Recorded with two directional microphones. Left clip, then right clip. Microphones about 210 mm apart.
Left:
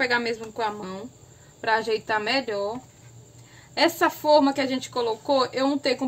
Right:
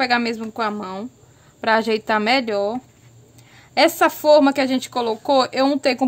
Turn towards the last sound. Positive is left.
turn(degrees=-55)  # may be behind; listen again after turning